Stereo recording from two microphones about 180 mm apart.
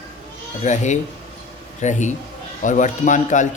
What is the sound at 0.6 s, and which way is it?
A man's voice, 40° left (ahead or behind).